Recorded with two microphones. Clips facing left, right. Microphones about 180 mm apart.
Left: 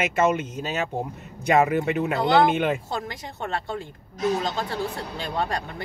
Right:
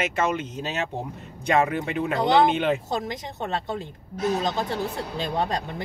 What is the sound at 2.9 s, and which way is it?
Speech, 20° right (ahead or behind).